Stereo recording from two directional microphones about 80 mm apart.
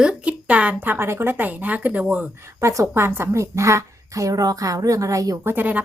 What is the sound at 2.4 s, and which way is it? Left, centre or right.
A woman's voice, right.